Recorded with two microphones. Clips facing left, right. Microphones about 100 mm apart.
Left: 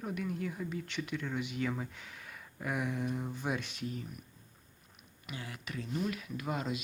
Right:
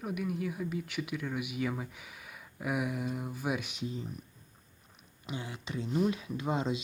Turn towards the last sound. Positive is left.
turn(degrees=-25)  # may be behind; listen again after turning